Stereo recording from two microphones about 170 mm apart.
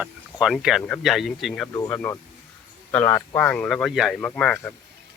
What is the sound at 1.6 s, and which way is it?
Speech, 20° left (ahead or behind).